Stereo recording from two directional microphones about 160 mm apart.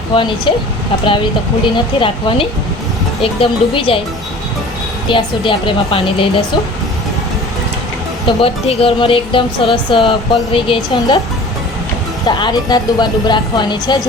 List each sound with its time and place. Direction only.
0.5 s speech: 30° left (ahead or behind)
5.0 s speech: 30° left (ahead or behind)
8.4 s speech: 35° left (ahead or behind)
12.2 s speech: 25° left (ahead or behind)